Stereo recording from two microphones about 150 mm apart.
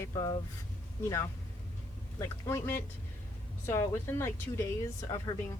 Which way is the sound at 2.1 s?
20° left (ahead or behind).